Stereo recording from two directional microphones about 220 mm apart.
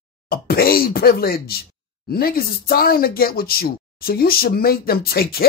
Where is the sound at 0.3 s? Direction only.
45° left (ahead or behind).